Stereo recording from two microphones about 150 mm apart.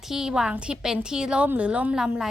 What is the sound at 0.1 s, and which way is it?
A woman's voice, 5° right (ahead or behind).